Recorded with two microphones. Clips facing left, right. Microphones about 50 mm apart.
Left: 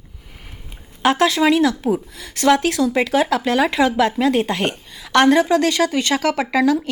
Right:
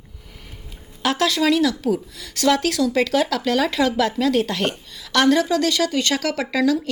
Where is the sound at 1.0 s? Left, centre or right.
Left.